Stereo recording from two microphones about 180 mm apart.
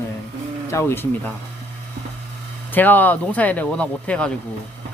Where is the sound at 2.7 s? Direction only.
10° left (ahead or behind).